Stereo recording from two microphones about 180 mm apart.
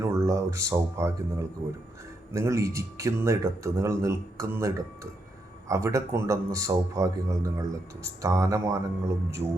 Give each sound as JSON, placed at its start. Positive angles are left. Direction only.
{"t": 0.0, "sound": "a man's voice", "side_deg": -15}